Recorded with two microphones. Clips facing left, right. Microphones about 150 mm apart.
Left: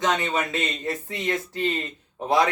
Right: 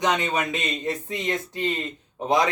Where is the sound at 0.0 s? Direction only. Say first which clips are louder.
Right 1 dB; 15° right (ahead or behind).